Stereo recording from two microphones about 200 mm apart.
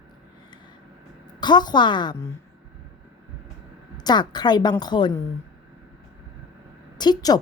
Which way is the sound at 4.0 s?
20° left (ahead or behind).